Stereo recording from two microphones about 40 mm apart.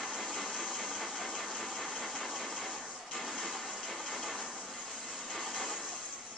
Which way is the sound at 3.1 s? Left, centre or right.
Centre.